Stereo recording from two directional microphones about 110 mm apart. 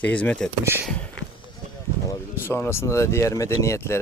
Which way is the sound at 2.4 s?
20° left (ahead or behind).